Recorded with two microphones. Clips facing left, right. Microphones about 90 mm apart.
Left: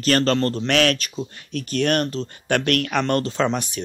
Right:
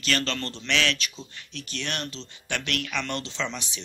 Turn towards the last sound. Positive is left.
turn(degrees=50)  # may be behind; listen again after turning